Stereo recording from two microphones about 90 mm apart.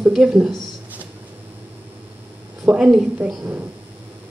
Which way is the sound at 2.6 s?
10° right (ahead or behind).